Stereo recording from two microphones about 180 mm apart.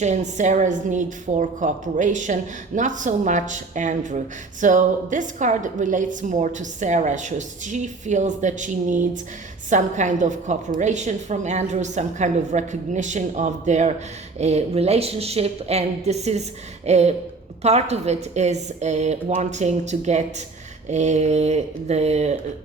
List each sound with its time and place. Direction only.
0.0 s a woman's voice: 40° right (ahead or behind)